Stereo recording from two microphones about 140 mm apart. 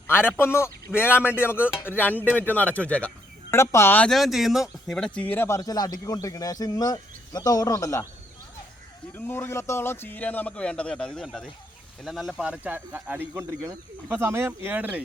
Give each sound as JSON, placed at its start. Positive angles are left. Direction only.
{"t": 0.1, "sound": "a man's voice", "side_deg": 15}
{"t": 4.1, "sound": "speech", "side_deg": 0}
{"t": 9.1, "sound": "a man's voice", "side_deg": 15}